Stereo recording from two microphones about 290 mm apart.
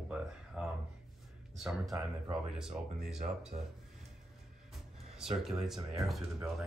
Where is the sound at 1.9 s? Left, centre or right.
Centre.